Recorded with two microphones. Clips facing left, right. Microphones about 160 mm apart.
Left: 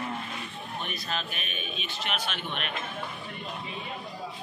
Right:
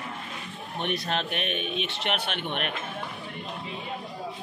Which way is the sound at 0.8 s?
70° right (ahead or behind).